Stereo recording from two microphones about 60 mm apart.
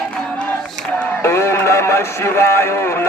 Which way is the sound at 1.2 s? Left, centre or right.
Left.